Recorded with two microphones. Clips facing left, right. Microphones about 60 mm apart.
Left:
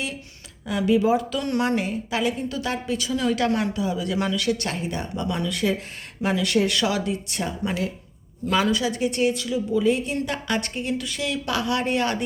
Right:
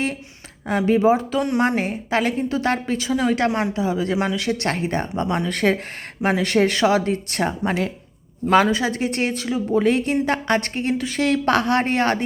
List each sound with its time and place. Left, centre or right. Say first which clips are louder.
0.7 s a woman's voice: right 3 dB; right
3.0 s a woman's voice: right 2 dB; right
4.7 s speech: right 5 dB; right
6.2 s a woman's voice: right 3 dB; right
7.1 s speech: right 5 dB; right
8.6 s a woman's voice: right 2 dB; right
9.7 s speech: right 4 dB; right
10.2 s speech: right 6 dB; right
10.9 s speech: right 4 dB; right
11.2 s speech: right 10 dB; right